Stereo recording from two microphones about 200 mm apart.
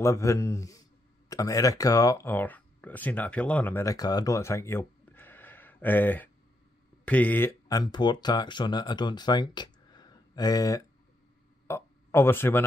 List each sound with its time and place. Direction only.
0.0 s speech: 15° left (ahead or behind)